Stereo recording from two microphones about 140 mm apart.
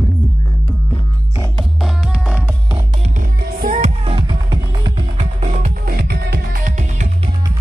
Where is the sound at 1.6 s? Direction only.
Centre (ahead or behind).